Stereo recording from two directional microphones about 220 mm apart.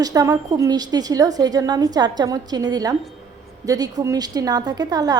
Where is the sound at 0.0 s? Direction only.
15° right (ahead or behind).